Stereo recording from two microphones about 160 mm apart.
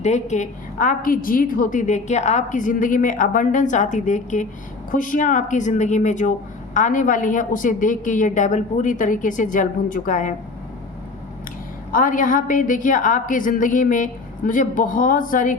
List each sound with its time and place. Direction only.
0.0 s a woman's voice: 45° left (ahead or behind)
11.9 s a woman's voice: 60° left (ahead or behind)